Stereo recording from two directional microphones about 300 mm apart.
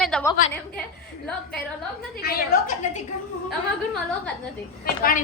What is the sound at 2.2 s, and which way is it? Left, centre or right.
Speech, left.